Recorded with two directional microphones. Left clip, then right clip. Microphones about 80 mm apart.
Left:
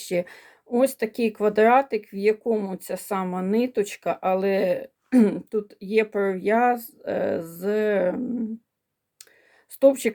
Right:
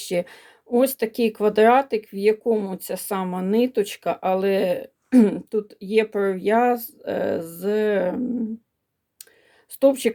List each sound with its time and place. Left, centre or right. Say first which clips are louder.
0.0 s speech: right 1 dB; right
8.2 s dog: right 3 dB; centre
9.8 s dog: even; centre